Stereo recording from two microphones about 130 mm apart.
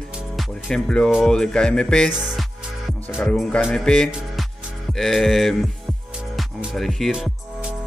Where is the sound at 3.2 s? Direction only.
10° left (ahead or behind).